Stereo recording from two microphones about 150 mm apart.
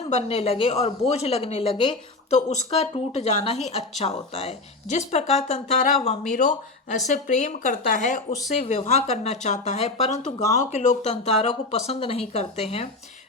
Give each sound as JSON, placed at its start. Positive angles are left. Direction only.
{"t": 0.1, "sound": "speech", "side_deg": 45}